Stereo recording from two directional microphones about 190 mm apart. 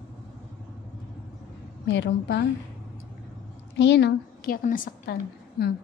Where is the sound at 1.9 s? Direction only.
70° left (ahead or behind).